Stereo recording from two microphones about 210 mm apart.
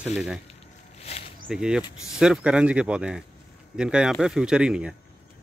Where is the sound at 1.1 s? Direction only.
30° left (ahead or behind).